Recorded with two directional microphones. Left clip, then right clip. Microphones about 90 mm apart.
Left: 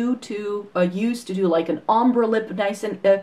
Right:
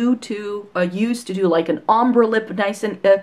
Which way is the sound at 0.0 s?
40° right (ahead or behind).